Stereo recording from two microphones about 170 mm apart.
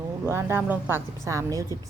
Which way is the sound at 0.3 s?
15° right (ahead or behind).